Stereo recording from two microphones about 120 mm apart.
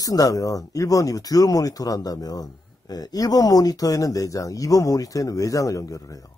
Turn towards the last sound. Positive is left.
turn(degrees=30)  # may be behind; listen again after turning